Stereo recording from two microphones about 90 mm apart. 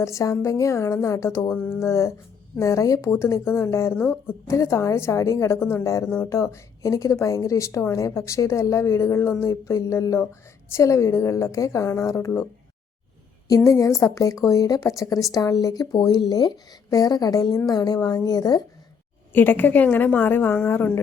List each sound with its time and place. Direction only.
0.0 s a woman's voice: 35° left (ahead or behind)
1.5 s speech: 10° left (ahead or behind)
1.8 s a woman's voice: 30° left (ahead or behind)
4.4 s a woman's voice: 35° left (ahead or behind)
13.7 s a woman's voice: 35° left (ahead or behind)
19.3 s a woman's voice: 20° left (ahead or behind)